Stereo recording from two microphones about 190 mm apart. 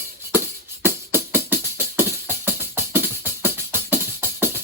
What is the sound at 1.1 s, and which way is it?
Music, 10° right (ahead or behind).